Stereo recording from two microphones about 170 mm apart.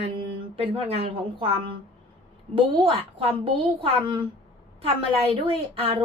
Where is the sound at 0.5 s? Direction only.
35° right (ahead or behind).